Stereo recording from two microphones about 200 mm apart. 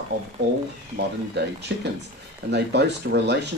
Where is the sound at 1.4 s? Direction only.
60° right (ahead or behind).